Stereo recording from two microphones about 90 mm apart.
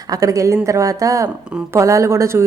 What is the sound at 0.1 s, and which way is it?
Speech, 40° right (ahead or behind).